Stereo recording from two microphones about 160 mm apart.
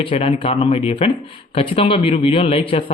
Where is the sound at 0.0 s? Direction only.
40° left (ahead or behind).